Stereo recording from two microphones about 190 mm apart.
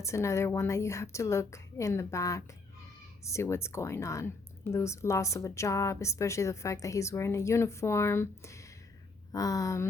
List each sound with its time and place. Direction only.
0.0 s a woman's voice: 15° left (ahead or behind)